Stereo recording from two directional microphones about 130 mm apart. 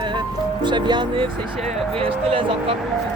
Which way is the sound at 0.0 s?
35° right (ahead or behind).